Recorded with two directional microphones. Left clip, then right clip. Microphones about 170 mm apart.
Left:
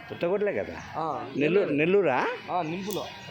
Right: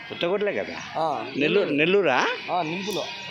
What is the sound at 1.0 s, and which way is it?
Speech, 35° right (ahead or behind).